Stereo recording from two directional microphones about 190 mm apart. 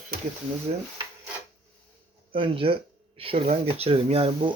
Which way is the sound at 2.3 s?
30° right (ahead or behind).